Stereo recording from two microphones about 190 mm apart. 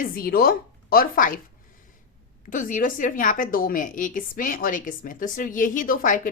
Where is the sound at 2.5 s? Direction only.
45° left (ahead or behind).